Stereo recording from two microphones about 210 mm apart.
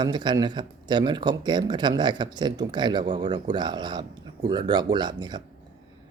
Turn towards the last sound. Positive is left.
turn(degrees=-20)  # may be behind; listen again after turning